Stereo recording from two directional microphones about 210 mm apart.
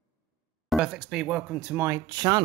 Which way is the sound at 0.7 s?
Centre (ahead or behind).